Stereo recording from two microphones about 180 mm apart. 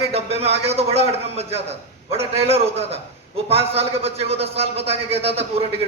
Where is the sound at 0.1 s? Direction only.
35° right (ahead or behind).